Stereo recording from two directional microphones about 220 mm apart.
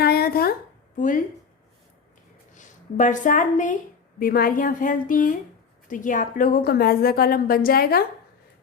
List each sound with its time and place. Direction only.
0.0 s a sound: 45° left (ahead or behind)
0.9 s speech: 35° left (ahead or behind)
2.6 s a woman's voice: 35° left (ahead or behind)